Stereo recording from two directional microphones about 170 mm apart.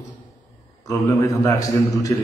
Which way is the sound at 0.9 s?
20° left (ahead or behind).